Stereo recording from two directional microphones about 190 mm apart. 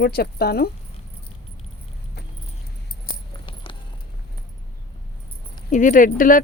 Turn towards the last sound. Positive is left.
turn(degrees=45)  # may be behind; listen again after turning